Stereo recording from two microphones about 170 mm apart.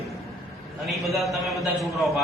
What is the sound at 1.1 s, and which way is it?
Speech, centre (ahead or behind).